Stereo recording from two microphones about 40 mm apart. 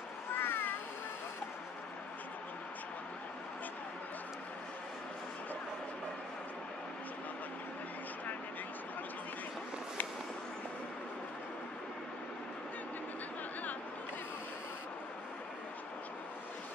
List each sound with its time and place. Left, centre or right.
0.4 s cat: left